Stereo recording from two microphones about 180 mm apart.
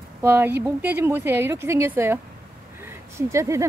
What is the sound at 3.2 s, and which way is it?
Speech, 15° right (ahead or behind).